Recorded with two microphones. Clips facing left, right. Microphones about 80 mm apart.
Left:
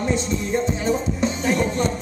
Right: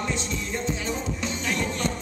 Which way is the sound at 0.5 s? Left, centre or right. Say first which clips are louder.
Left 8 dB; left.